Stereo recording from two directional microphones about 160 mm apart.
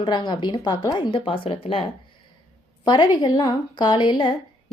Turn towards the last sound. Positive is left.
turn(degrees=30)  # may be behind; listen again after turning